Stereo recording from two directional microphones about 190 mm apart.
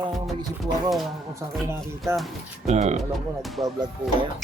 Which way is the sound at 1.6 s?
15° right (ahead or behind).